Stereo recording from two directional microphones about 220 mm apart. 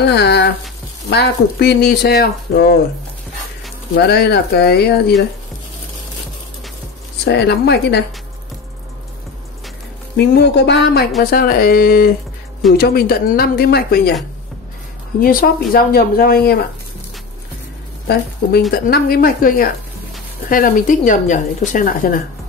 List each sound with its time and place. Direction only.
0.0 s speech: 50° left (ahead or behind)
3.9 s speech: 50° left (ahead or behind)
7.2 s speech: 50° left (ahead or behind)
10.1 s speech: 50° left (ahead or behind)
15.1 s speech: 40° left (ahead or behind)
18.7 s speech: 45° left (ahead or behind)